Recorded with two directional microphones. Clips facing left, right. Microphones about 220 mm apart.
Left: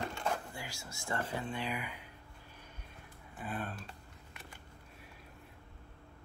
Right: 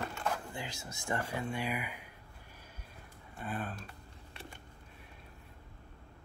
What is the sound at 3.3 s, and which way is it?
Speech, centre (ahead or behind).